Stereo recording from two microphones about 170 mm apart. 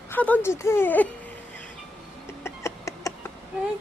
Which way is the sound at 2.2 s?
15° left (ahead or behind).